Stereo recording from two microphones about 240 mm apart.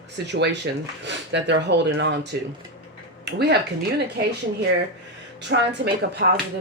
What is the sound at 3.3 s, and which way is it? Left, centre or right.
Speech, right.